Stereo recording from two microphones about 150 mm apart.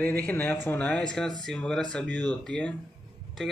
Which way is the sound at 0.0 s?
10° left (ahead or behind).